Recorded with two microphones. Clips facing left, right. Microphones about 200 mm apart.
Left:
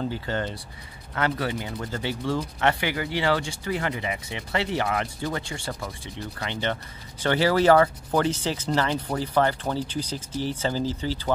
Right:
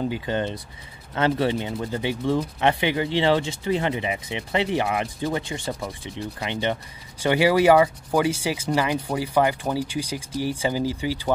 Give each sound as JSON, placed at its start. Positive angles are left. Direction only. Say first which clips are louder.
{"t": 0.0, "sound": "speech", "louder": "right 3 dB", "side_deg": -15}